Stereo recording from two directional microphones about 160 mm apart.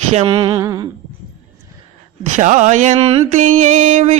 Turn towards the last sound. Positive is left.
turn(degrees=-50)  # may be behind; listen again after turning